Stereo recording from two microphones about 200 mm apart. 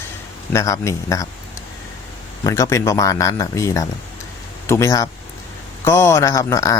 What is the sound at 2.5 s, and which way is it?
Speech, 15° left (ahead or behind).